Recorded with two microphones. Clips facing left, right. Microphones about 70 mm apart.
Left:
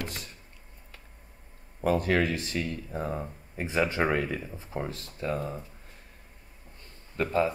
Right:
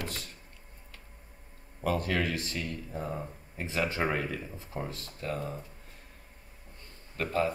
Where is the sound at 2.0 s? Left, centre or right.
Left.